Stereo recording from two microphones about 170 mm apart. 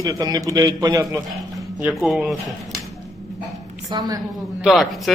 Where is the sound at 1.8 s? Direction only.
5° right (ahead or behind).